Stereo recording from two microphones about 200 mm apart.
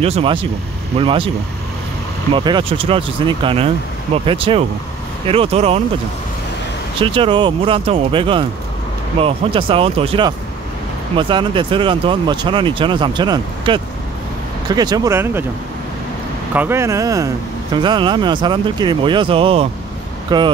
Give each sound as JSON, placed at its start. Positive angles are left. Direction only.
{"t": 0.0, "sound": "speech", "side_deg": -30}
{"t": 2.3, "sound": "speech", "side_deg": -25}
{"t": 7.0, "sound": "speech", "side_deg": -25}
{"t": 16.5, "sound": "speech", "side_deg": -10}